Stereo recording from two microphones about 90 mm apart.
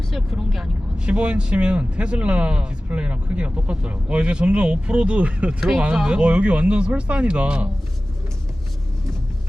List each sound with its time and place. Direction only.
0.1 s speech: 5° right (ahead or behind)
5.5 s speech: 5° right (ahead or behind)